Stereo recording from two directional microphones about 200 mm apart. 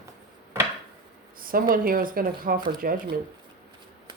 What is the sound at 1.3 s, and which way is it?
Speech, 45° right (ahead or behind).